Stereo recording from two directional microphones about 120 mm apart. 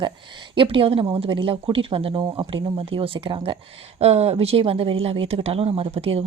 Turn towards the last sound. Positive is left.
turn(degrees=-55)  # may be behind; listen again after turning